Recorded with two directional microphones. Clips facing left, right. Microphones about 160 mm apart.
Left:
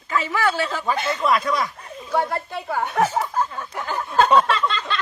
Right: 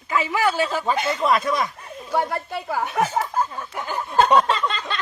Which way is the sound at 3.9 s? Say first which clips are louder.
Even; 15° right (ahead or behind).